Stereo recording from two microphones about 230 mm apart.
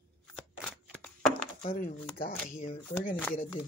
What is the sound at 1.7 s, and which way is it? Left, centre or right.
Speech, left.